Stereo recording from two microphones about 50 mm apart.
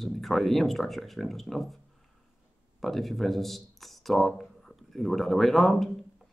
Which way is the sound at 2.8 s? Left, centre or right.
Centre.